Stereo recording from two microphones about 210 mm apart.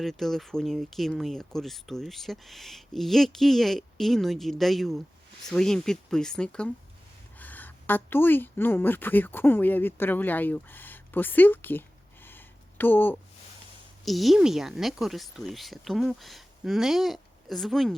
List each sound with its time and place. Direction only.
0.0 s a woman's voice: centre (ahead or behind)